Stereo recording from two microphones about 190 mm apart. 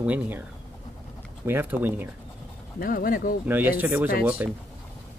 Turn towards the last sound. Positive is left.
turn(degrees=-10)  # may be behind; listen again after turning